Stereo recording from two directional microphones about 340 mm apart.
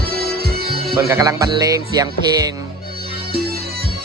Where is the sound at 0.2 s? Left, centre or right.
Right.